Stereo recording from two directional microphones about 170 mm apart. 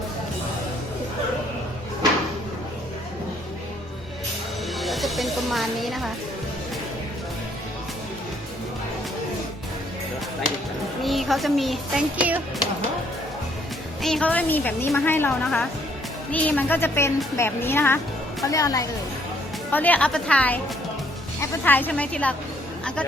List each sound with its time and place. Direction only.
4.8 s speech: centre (ahead or behind)
11.0 s a sound: centre (ahead or behind)
14.0 s a woman's voice: 5° left (ahead or behind)